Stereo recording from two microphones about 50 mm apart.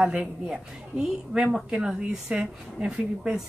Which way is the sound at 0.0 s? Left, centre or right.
Centre.